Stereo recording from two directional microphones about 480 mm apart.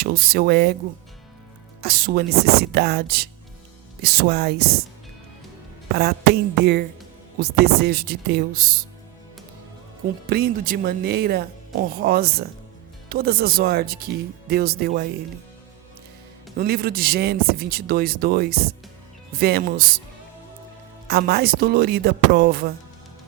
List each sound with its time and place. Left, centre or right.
0.0 s speech: centre
1.8 s speech: centre
7.3 s speech: centre
10.2 s speech: centre
16.6 s speech: centre
21.1 s speech: centre